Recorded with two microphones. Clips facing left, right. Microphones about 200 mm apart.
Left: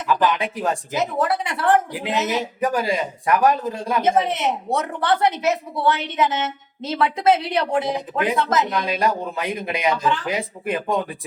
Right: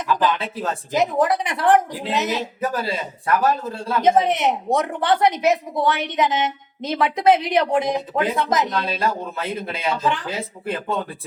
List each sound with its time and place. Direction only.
0.3 s a man's voice: 15° left (ahead or behind)
0.9 s a woman's voice: 15° right (ahead or behind)
2.6 s a man's voice: 15° left (ahead or behind)
4.0 s a woman's voice: 15° right (ahead or behind)
8.7 s a man's voice: 15° left (ahead or behind)